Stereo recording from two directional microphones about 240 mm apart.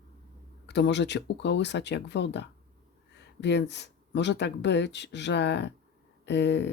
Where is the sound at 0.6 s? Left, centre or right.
Left.